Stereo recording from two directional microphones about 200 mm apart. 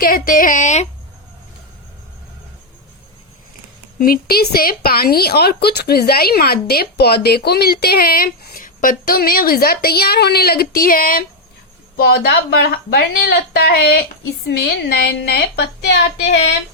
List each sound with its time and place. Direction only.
0.0 s a woman's voice: 45° left (ahead or behind)
3.9 s a woman's voice: 45° left (ahead or behind)